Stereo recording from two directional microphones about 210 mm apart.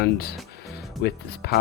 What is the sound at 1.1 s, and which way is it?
Speech, 50° left (ahead or behind).